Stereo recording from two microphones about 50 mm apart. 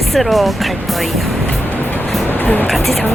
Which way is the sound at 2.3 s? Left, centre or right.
Left.